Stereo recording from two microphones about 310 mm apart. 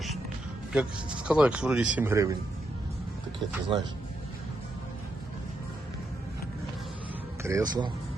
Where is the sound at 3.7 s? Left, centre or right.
Centre.